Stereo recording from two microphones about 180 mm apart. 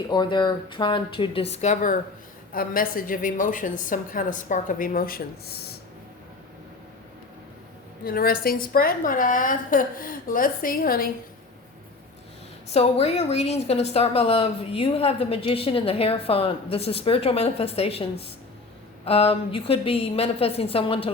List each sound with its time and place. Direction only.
0.1 s a woman's voice: 25° left (ahead or behind); by 5.7 s 60° left (ahead or behind)
8.0 s a woman's voice: 55° left (ahead or behind)
12.6 s a woman's voice: 35° left (ahead or behind)